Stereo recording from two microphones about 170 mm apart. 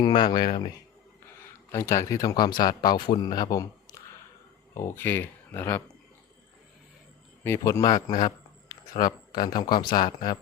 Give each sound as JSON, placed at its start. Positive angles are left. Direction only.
{"t": 0.0, "sound": "speech", "side_deg": 25}
{"t": 1.7, "sound": "speech", "side_deg": 15}
{"t": 7.4, "sound": "speech", "side_deg": 15}